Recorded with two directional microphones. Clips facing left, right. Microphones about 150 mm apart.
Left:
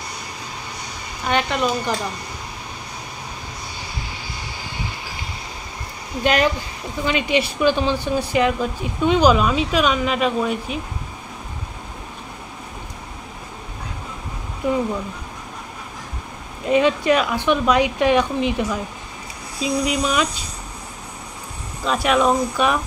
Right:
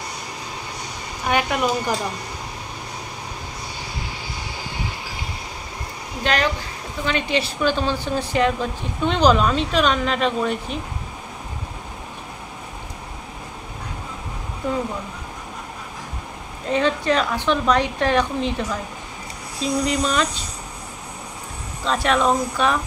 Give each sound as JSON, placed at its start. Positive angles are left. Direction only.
{"t": 1.2, "sound": "a woman's voice", "side_deg": -10}
{"t": 6.2, "sound": "speech", "side_deg": 15}
{"t": 16.6, "sound": "speech", "side_deg": 15}
{"t": 21.8, "sound": "speech", "side_deg": 10}